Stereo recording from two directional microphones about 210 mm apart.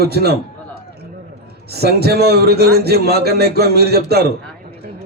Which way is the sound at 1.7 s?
50° right (ahead or behind).